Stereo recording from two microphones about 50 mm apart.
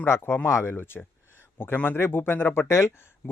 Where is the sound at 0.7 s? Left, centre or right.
Left.